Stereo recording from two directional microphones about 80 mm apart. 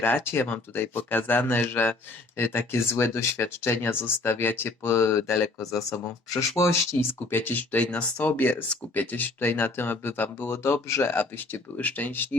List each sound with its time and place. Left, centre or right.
0.0 s speech: left